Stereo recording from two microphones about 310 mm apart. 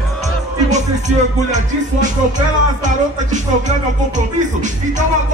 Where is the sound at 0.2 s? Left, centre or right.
Right.